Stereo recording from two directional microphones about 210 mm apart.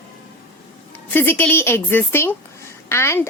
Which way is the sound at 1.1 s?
10° left (ahead or behind).